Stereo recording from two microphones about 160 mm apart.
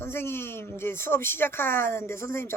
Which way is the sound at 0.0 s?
15° left (ahead or behind).